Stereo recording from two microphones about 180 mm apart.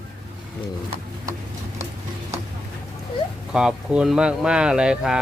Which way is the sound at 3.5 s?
5° right (ahead or behind).